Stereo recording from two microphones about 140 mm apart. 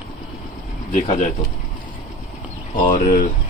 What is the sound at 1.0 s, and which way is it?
Speech, 50° left (ahead or behind).